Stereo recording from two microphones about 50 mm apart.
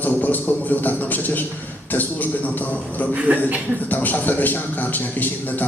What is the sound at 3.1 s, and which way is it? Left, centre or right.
Speech, right.